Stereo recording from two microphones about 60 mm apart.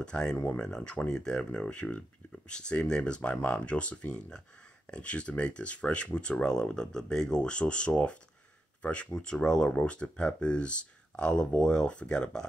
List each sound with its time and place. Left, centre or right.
0.0 s speech: centre